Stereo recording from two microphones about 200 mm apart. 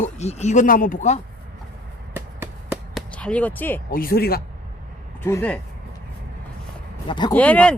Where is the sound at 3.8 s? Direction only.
45° left (ahead or behind).